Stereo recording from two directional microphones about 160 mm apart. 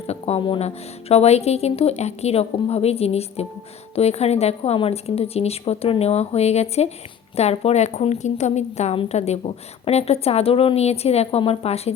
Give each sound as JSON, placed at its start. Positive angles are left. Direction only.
{"t": 0.1, "sound": "a woman's voice", "side_deg": 35}